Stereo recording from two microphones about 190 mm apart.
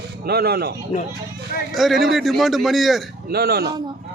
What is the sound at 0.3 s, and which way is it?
Speech, 55° right (ahead or behind).